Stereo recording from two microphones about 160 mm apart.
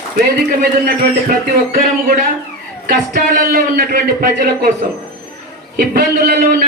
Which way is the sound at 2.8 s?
65° right (ahead or behind).